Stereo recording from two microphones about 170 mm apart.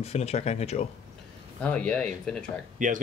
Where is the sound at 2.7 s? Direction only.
50° right (ahead or behind).